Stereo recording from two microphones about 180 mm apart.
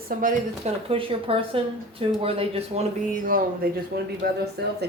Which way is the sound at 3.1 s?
50° right (ahead or behind).